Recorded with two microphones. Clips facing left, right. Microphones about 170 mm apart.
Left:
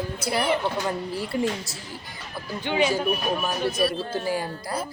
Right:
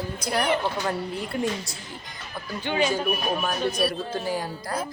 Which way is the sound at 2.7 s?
15° left (ahead or behind).